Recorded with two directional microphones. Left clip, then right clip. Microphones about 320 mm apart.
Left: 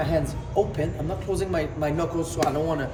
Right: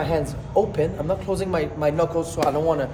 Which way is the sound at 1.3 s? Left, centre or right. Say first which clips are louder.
Right 2 dB; centre.